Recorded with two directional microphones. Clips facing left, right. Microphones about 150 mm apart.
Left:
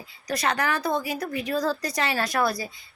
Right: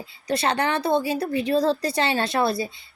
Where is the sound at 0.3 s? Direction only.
30° right (ahead or behind).